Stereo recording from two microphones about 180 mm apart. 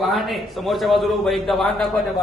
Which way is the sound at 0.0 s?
Centre (ahead or behind).